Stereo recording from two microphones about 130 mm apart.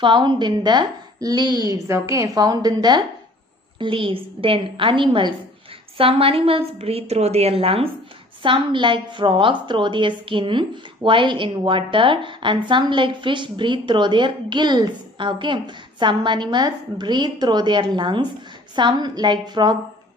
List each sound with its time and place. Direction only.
0.0 s a woman's voice: 35° right (ahead or behind)
3.8 s a woman's voice: 45° right (ahead or behind)